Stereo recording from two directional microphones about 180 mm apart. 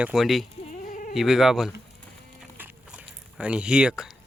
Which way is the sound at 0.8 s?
45° left (ahead or behind).